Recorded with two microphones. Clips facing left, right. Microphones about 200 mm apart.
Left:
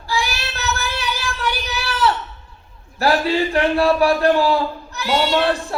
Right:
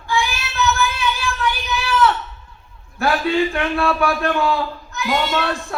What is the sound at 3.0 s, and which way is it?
Music, 35° left (ahead or behind).